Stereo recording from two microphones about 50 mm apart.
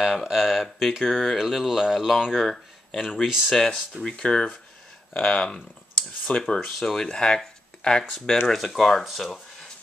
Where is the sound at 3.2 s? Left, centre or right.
Centre.